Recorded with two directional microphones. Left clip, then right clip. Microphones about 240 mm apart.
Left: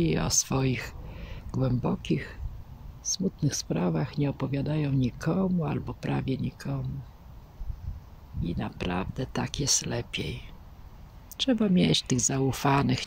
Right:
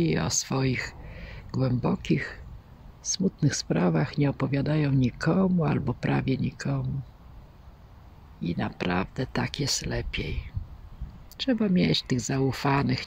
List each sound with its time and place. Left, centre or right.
0.0 s speech: centre
8.4 s speech: centre